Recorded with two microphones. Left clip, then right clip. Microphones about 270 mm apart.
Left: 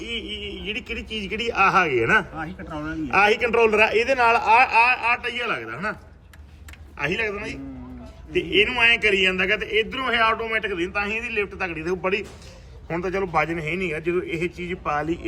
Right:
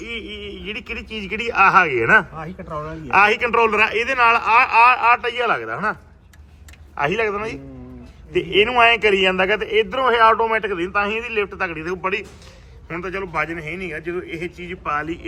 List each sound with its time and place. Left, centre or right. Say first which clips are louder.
0.0 s a man's voice: even; centre